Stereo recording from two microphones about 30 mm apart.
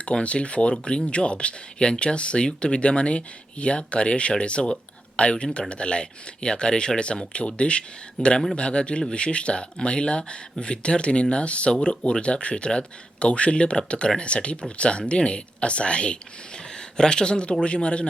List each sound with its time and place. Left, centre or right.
0.0 s speech: left